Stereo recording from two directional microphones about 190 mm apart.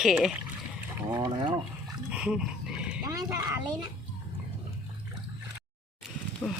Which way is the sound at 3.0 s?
20° right (ahead or behind).